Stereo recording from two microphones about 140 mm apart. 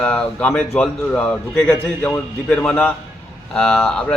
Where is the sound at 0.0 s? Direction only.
10° left (ahead or behind).